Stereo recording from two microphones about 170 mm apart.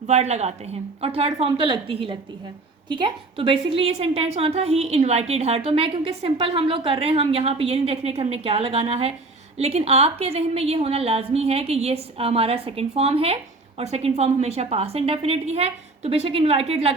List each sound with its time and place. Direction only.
0.1 s a woman's voice: 40° right (ahead or behind)